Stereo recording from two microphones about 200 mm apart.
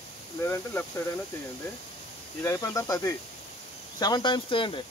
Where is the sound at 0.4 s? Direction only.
10° left (ahead or behind).